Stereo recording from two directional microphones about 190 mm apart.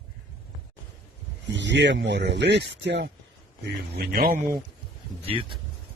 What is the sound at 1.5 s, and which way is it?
Speech, 65° right (ahead or behind).